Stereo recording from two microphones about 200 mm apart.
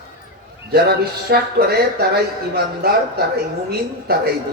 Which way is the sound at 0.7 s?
50° right (ahead or behind).